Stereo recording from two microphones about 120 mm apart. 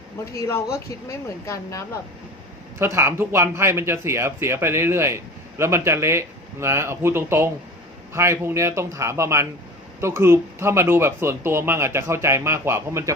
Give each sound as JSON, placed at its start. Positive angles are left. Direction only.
{"t": 0.3, "sound": "a woman's voice", "side_deg": 25}
{"t": 2.7, "sound": "speech", "side_deg": -20}